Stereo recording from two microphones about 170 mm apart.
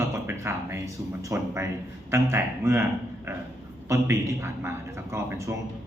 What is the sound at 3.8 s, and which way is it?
A man's voice, 15° right (ahead or behind).